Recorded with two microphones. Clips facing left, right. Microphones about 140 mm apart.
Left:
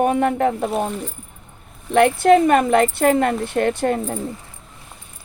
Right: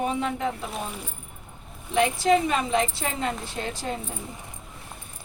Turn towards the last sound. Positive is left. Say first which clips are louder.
# left 12 dB
turn(degrees=60)  # may be behind; listen again after turning